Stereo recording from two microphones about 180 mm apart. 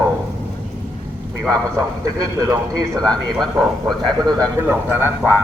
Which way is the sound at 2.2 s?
20° right (ahead or behind).